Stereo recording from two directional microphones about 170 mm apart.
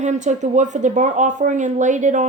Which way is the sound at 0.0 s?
45° right (ahead or behind).